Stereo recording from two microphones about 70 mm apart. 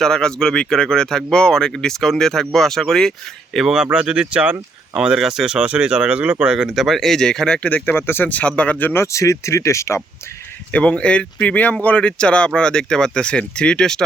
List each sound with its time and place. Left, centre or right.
0.0 s speech: centre
3.6 s speech: centre
7.7 s speech: left
8.9 s speech: left
10.7 s speech: centre